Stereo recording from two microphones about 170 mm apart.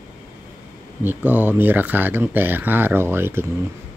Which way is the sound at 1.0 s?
10° right (ahead or behind).